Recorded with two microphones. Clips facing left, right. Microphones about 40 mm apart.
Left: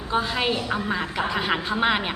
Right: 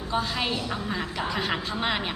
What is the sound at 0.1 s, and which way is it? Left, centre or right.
A woman's voice, centre.